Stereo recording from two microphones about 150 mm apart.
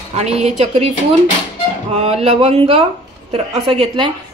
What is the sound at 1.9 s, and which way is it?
A woman's voice, 45° right (ahead or behind).